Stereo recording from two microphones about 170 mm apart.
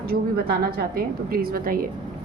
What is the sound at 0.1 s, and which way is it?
A woman's voice, 65° right (ahead or behind).